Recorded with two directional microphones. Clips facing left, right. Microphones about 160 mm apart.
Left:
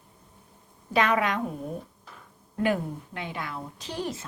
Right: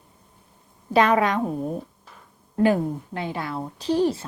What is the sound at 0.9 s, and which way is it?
A woman's voice, 35° right (ahead or behind).